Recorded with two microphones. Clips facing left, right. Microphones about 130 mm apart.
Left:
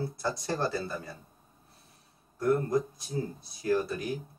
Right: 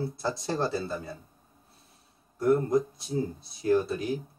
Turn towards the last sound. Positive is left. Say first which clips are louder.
# right 3 dB
turn(degrees=-25)  # may be behind; listen again after turning